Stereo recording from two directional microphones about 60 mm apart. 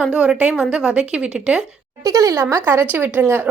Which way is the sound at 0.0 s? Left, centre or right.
Centre.